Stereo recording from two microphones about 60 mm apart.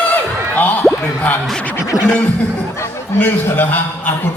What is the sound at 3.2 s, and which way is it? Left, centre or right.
Speech, left.